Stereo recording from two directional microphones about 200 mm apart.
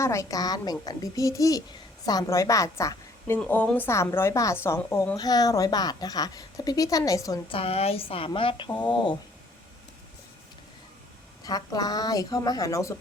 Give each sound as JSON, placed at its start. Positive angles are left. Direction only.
{"t": 0.0, "sound": "a woman's voice", "side_deg": 15}
{"t": 7.6, "sound": "speech", "side_deg": 30}
{"t": 11.4, "sound": "speech", "side_deg": 20}